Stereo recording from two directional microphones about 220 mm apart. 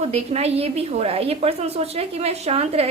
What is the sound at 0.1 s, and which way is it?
A woman's voice, 30° right (ahead or behind).